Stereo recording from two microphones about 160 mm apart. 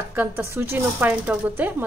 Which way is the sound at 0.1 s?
15° right (ahead or behind).